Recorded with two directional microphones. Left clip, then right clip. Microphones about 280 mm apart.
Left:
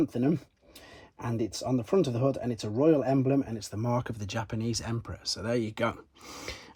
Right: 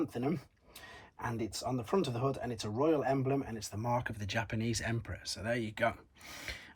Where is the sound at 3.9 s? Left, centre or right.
Centre.